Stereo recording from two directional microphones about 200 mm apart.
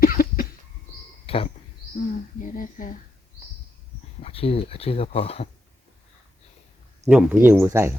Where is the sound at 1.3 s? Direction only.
30° left (ahead or behind).